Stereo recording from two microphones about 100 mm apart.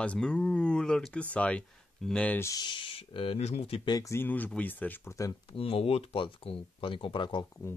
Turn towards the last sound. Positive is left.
turn(degrees=55)  # may be behind; listen again after turning